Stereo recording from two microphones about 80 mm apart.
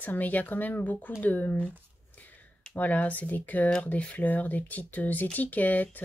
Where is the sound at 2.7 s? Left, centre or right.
Left.